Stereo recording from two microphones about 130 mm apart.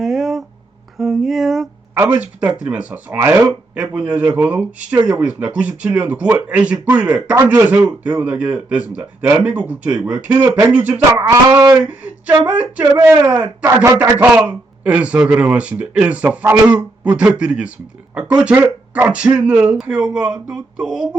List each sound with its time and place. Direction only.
0.0 s a sound: centre (ahead or behind)
0.9 s speech: centre (ahead or behind)
2.0 s speech: 10° right (ahead or behind)
11.3 s speech: 30° right (ahead or behind)
11.9 s speech: 10° right (ahead or behind)
12.8 s speech: 25° right (ahead or behind)
13.2 s speech: 10° right (ahead or behind)
13.7 s speech: 25° right (ahead or behind); by 21.1 s centre (ahead or behind)